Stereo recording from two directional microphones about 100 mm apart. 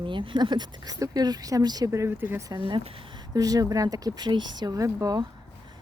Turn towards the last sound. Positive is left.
turn(degrees=-35)  # may be behind; listen again after turning